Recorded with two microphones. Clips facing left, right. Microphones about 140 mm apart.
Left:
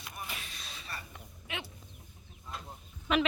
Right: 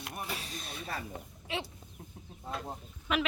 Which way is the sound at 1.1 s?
30° right (ahead or behind).